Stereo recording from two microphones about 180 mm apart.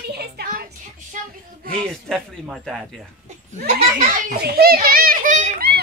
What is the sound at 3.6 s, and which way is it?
A woman's voice, 50° right (ahead or behind).